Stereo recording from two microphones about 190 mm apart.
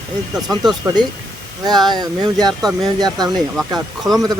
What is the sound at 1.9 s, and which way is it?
Speech, 20° right (ahead or behind).